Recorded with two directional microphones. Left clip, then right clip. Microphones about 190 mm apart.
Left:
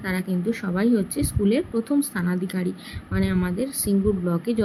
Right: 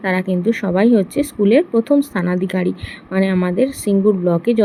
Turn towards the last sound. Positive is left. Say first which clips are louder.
# right 10 dB
turn(degrees=-10)  # may be behind; listen again after turning